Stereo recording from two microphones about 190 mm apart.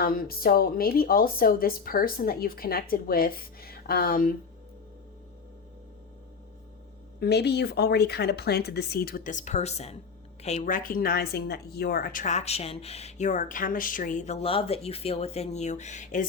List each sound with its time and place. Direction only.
0.0 s a woman's voice: 50° left (ahead or behind)
7.2 s speech: 60° left (ahead or behind); by 16.2 s 40° left (ahead or behind)